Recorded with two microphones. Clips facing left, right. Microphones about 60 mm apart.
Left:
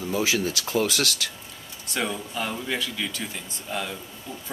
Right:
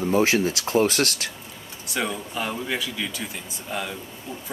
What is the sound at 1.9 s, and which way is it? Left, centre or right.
Speech, centre.